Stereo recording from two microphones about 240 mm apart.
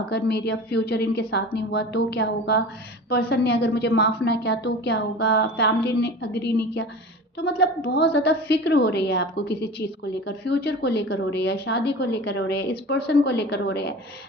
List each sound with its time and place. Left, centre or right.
0.1 s a woman's voice: left